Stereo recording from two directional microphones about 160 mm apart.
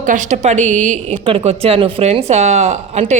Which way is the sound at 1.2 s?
40° right (ahead or behind).